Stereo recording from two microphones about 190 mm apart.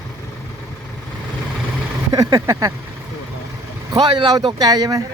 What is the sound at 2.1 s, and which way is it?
Speech, 15° right (ahead or behind).